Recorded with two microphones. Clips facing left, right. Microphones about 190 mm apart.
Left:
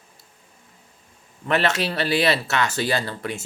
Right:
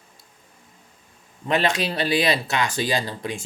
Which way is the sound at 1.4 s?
15° right (ahead or behind).